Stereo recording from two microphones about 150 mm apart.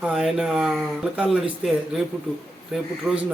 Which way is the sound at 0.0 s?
Centre (ahead or behind).